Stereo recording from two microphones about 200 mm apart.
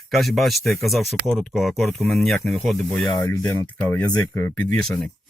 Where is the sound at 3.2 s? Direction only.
15° left (ahead or behind).